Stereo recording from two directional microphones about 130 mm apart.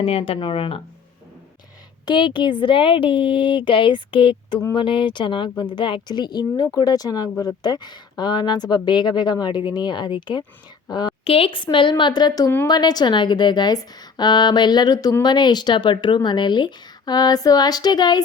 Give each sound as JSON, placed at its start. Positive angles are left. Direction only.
{"t": 0.0, "sound": "speech", "side_deg": 45}
{"t": 2.0, "sound": "a woman's voice", "side_deg": 35}
{"t": 11.2, "sound": "speech", "side_deg": 45}